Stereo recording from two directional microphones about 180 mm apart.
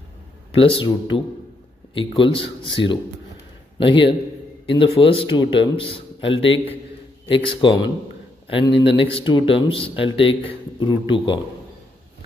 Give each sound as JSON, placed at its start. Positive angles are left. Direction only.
{"t": 0.5, "sound": "speech", "side_deg": 30}
{"t": 2.0, "sound": "a man's voice", "side_deg": 30}